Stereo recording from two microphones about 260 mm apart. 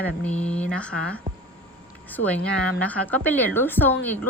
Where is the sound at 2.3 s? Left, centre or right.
Centre.